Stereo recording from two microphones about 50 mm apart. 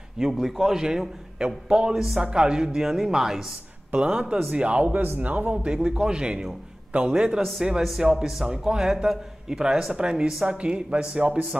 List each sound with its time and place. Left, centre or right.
0.2 s a man's voice: centre
2.0 s a man's voice: centre
3.9 s speech: centre
5.6 s a man's voice: centre
7.8 s speech: centre
8.5 s a man's voice: centre